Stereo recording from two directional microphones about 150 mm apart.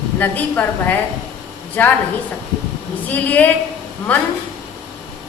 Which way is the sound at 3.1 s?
10° left (ahead or behind).